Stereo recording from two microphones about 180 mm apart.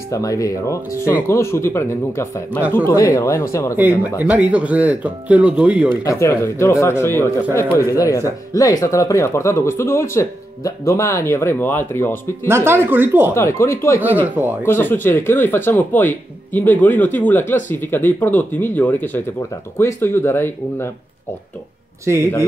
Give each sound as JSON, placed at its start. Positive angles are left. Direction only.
{"t": 0.1, "sound": "speech", "side_deg": 20}
{"t": 4.2, "sound": "speech", "side_deg": -10}
{"t": 5.9, "sound": "speech", "side_deg": 15}
{"t": 12.4, "sound": "speech", "side_deg": -15}
{"t": 13.3, "sound": "speech", "side_deg": 15}
{"t": 22.0, "sound": "speech", "side_deg": -15}